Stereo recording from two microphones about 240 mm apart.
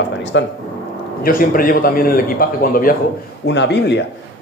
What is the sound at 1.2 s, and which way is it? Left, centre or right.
A man's voice, left.